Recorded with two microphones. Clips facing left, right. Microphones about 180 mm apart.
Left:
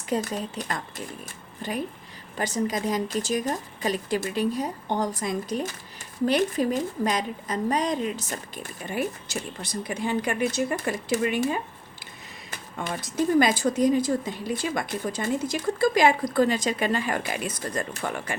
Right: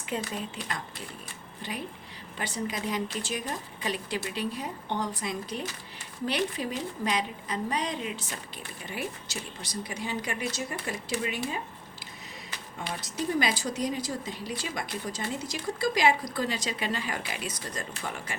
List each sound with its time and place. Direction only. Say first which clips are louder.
0.1 s speech: left 6 dB; 40° left (ahead or behind)
12.8 s speech: left 7 dB; 50° left (ahead or behind)